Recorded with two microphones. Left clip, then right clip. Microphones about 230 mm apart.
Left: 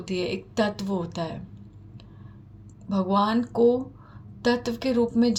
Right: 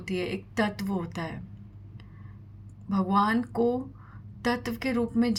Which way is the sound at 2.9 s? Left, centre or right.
Right.